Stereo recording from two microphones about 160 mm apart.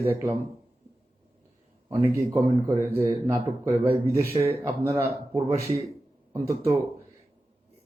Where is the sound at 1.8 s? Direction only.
15° right (ahead or behind).